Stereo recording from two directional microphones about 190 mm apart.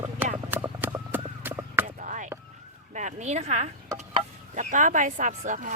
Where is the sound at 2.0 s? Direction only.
40° right (ahead or behind).